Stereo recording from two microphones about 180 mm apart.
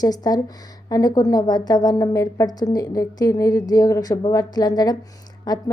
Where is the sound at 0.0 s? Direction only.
20° left (ahead or behind).